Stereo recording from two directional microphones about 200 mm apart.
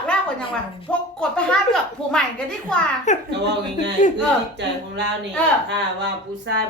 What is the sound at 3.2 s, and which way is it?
Speech, 60° right (ahead or behind).